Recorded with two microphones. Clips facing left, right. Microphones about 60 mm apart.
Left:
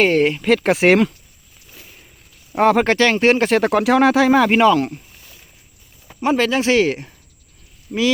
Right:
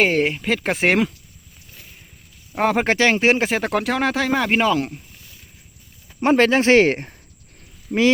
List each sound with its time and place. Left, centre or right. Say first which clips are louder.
0.0 s speech: left 3 dB; centre
1.7 s a sound: left 2 dB; centre
2.6 s speech: left 4 dB; centre
6.2 s speech: right 2 dB; right
7.9 s speech: right 2 dB; centre